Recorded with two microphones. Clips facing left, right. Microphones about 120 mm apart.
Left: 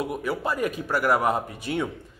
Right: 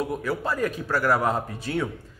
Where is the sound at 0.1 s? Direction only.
15° left (ahead or behind).